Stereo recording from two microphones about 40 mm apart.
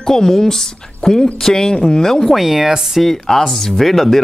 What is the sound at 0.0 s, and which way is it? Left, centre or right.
Speech, centre.